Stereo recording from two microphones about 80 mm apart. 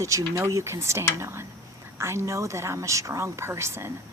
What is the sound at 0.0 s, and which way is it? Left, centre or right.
A woman's voice, right.